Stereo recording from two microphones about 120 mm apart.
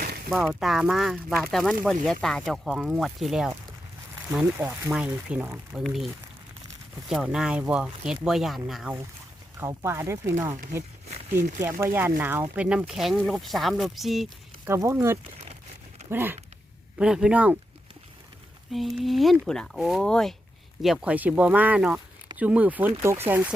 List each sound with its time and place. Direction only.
0.3 s speech: 5° right (ahead or behind)
4.5 s speech: 15° right (ahead or behind)
5.8 s speech: centre (ahead or behind)
7.1 s speech: 5° right (ahead or behind)
9.6 s speech: 20° right (ahead or behind); by 14.3 s centre (ahead or behind)
14.7 s speech: 20° right (ahead or behind)
17.0 s speech: 5° right (ahead or behind)
18.7 s speech: centre (ahead or behind); by 23.5 s 15° right (ahead or behind)